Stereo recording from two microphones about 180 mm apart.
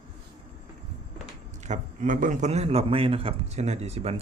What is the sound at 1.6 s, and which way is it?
A man's voice, 40° right (ahead or behind).